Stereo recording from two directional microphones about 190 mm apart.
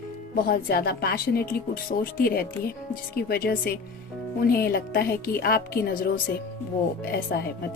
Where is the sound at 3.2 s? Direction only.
55° left (ahead or behind).